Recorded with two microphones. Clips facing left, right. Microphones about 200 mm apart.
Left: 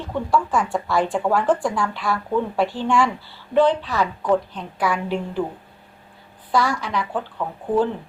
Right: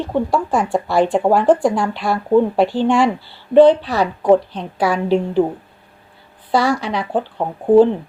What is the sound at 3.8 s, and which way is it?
Speech, 35° right (ahead or behind).